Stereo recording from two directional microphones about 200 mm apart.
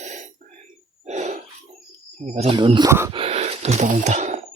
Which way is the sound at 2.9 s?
15° right (ahead or behind).